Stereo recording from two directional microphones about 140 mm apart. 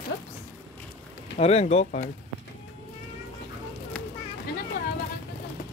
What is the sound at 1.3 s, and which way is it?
Speech, 50° left (ahead or behind).